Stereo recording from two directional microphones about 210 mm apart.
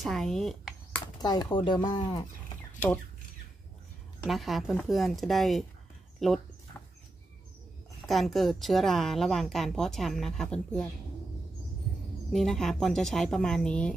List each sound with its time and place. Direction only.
0.0 s speech: centre (ahead or behind)
1.2 s speech: 20° left (ahead or behind)
4.3 s a woman's voice: centre (ahead or behind)
8.1 s a woman's voice: centre (ahead or behind)
12.3 s a woman's voice: centre (ahead or behind)